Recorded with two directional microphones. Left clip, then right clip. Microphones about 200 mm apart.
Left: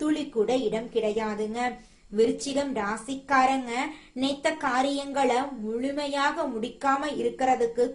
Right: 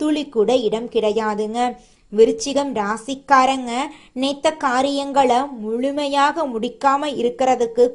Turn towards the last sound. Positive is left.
turn(degrees=-40)  # may be behind; listen again after turning